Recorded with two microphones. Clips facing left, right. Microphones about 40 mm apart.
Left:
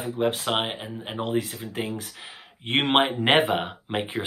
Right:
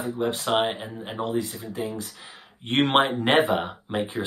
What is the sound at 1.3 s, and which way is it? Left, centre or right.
Speech, left.